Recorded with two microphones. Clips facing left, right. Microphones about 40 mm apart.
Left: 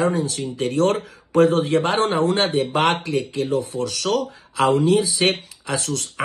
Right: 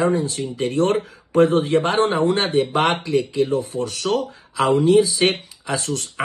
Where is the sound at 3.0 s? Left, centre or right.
Left.